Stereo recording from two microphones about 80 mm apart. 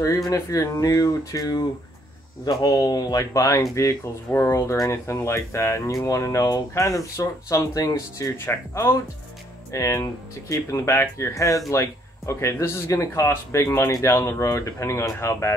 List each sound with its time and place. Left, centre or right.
0.0 s speech: left